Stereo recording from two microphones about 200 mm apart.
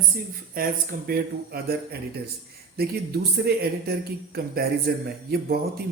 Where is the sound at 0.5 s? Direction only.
45° right (ahead or behind).